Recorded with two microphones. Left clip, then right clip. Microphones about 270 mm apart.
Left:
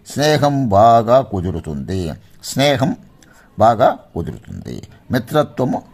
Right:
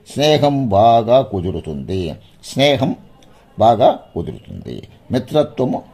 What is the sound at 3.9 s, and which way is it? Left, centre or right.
Speech, left.